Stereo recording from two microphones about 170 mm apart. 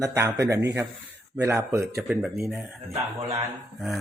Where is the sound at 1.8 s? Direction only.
5° right (ahead or behind).